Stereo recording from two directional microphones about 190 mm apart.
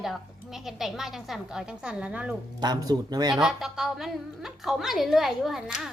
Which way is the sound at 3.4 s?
Centre (ahead or behind).